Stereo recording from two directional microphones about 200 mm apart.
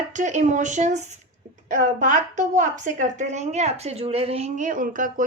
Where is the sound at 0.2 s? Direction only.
35° right (ahead or behind).